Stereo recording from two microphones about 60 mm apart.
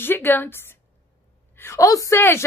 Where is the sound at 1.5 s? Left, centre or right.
Left.